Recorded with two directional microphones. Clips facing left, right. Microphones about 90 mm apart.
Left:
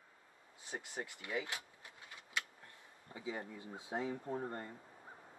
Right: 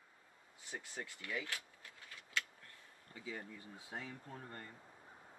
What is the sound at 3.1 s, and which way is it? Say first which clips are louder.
Speech: left 4 dB; 20° left (ahead or behind).